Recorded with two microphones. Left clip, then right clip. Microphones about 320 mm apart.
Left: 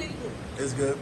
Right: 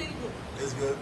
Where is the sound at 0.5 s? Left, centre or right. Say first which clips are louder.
Left 3 dB; centre.